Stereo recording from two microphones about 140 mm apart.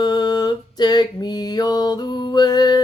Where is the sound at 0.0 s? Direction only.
30° left (ahead or behind).